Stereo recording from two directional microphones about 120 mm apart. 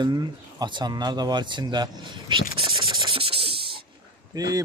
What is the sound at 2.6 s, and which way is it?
Scratch, 45° right (ahead or behind).